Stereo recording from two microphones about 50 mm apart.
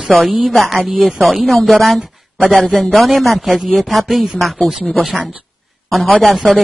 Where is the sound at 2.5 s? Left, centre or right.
Left.